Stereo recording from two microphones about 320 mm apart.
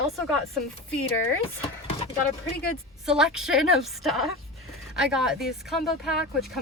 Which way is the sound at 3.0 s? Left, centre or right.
Centre.